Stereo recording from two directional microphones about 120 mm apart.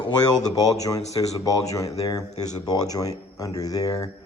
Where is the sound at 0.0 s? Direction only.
35° left (ahead or behind).